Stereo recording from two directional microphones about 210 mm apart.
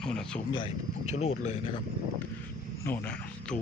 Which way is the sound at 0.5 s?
25° left (ahead or behind).